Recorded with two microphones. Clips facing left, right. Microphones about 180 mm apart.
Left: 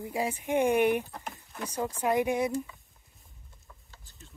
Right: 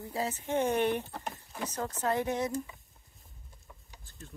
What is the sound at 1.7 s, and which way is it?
Speech, 10° left (ahead or behind).